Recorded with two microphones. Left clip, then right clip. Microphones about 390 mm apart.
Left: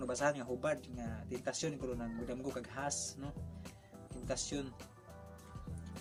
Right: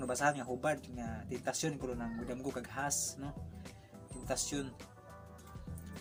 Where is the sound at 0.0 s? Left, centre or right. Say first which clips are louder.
Right 2 dB; left.